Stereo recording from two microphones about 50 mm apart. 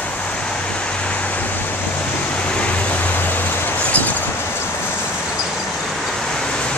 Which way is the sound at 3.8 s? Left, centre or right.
Left.